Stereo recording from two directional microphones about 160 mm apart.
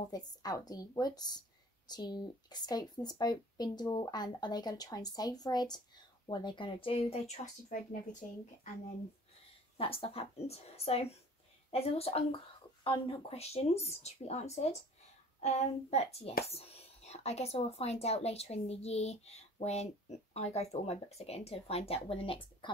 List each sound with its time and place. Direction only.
0.1 s speech: 25° left (ahead or behind)
7.7 s speech: 55° left (ahead or behind)
9.8 s speech: 35° left (ahead or behind)